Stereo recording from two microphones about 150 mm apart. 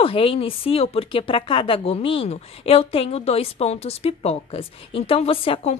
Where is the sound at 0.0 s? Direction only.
35° left (ahead or behind).